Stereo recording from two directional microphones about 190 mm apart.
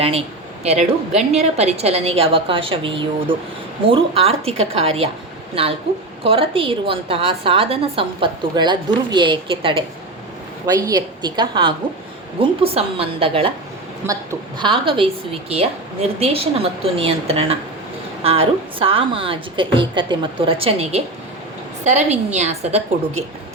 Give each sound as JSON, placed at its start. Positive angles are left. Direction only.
{"t": 0.0, "sound": "a woman's voice", "side_deg": -30}
{"t": 6.2, "sound": "a woman's voice", "side_deg": -30}